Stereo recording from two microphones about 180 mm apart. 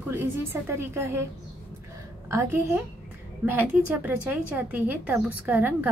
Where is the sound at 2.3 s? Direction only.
15° right (ahead or behind).